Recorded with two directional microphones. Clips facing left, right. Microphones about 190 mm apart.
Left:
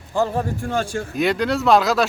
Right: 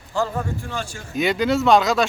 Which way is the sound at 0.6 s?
50° left (ahead or behind).